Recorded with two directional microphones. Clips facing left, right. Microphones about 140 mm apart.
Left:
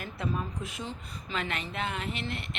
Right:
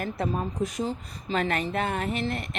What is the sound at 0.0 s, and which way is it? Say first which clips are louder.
A woman's voice: right 5 dB; 40° right (ahead or behind).